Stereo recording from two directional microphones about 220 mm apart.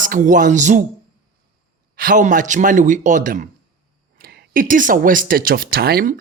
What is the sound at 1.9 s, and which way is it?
Speech, 40° right (ahead or behind).